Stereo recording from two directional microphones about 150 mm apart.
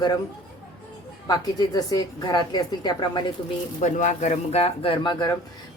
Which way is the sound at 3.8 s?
55° left (ahead or behind).